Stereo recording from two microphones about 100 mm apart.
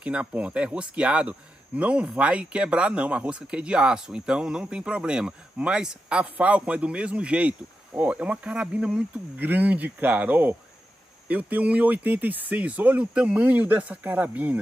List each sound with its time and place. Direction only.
0.0 s speech: 10° right (ahead or behind)